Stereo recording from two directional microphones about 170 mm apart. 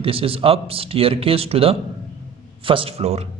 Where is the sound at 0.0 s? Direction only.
35° right (ahead or behind).